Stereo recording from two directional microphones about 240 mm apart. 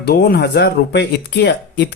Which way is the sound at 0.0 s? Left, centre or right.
Left.